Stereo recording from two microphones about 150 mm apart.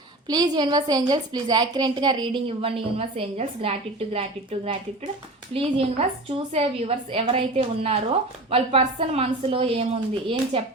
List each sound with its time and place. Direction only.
0.3 s a woman's voice: 25° right (ahead or behind)